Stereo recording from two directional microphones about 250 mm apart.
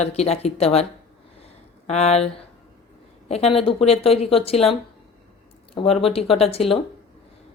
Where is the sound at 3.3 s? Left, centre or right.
Left.